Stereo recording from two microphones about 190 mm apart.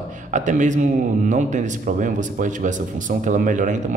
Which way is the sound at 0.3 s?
40° right (ahead or behind).